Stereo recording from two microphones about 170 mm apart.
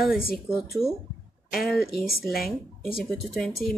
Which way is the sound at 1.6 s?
Centre (ahead or behind).